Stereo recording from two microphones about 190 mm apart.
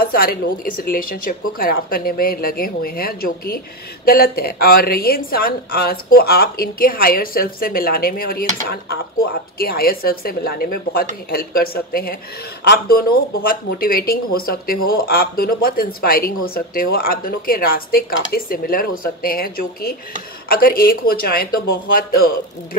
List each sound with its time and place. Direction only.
0.0 s speech: 50° left (ahead or behind)
9.6 s speech: 50° left (ahead or behind)